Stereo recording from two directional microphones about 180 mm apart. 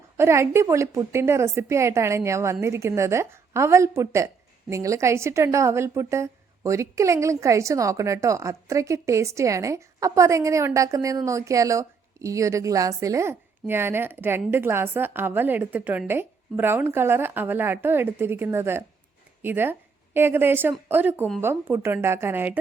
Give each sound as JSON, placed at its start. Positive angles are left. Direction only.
{"t": 0.2, "sound": "a woman's voice", "side_deg": -15}